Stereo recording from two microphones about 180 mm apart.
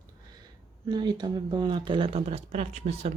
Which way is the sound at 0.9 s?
25° right (ahead or behind).